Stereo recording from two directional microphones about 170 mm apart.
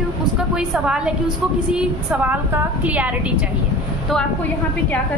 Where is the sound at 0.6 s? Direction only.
5° right (ahead or behind).